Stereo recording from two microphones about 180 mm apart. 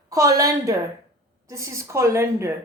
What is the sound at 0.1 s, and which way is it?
A woman's voice, 20° right (ahead or behind).